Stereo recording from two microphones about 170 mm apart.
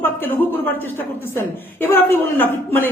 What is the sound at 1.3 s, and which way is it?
A man's voice, 15° left (ahead or behind).